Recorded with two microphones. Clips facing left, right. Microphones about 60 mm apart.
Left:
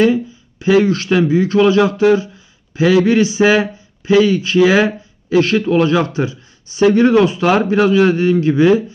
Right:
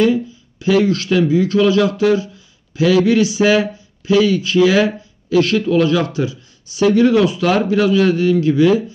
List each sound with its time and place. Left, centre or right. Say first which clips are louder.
0.0 s speech: left 1 dB; left